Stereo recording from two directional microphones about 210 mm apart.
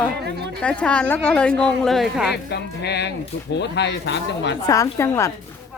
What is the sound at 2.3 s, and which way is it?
Speech, 50° left (ahead or behind).